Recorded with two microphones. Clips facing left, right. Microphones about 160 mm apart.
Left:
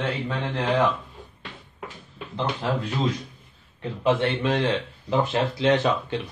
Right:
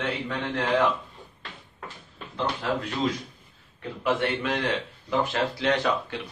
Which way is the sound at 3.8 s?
25° left (ahead or behind).